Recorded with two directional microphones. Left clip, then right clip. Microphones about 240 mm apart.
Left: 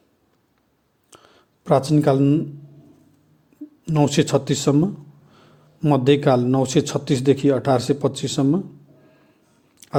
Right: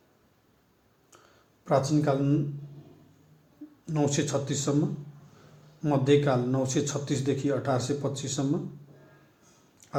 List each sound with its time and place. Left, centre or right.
1.6 s a man's voice: left
3.8 s a man's voice: left
5.8 s a man's voice: left